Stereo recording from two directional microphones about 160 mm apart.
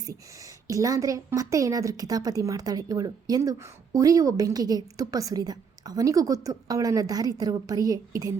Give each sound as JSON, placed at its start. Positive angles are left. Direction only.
{"t": 0.0, "sound": "a woman's voice", "side_deg": -20}